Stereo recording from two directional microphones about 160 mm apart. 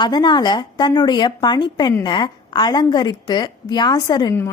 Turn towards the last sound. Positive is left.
turn(degrees=20)  # may be behind; listen again after turning